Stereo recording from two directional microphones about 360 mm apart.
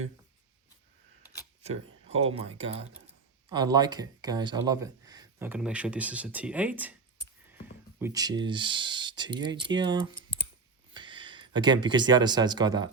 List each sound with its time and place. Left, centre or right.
1.6 s speech: centre
7.9 s speech: centre